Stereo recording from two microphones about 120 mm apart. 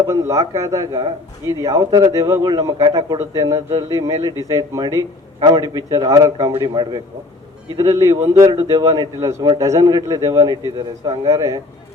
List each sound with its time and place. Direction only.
0.1 s a man's voice: 25° right (ahead or behind)